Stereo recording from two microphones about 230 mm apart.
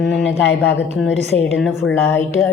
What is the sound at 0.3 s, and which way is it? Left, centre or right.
Speech, left.